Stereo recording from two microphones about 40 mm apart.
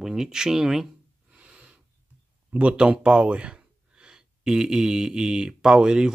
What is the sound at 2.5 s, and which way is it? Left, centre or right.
Speech, right.